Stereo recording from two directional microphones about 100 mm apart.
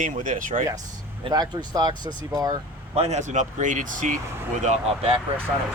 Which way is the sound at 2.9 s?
90° right.